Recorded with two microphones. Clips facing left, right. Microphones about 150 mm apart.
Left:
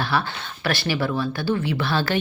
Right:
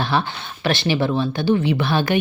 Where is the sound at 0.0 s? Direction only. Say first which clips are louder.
Right 3 dB; 20° right (ahead or behind).